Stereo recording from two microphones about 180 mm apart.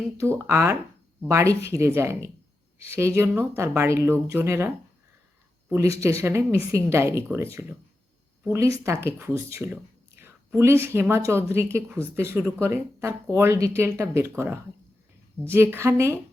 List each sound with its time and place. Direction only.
0.2 s speech: 15° right (ahead or behind)
10.2 s a sound: 15° right (ahead or behind)
11.1 s speech: 15° right (ahead or behind)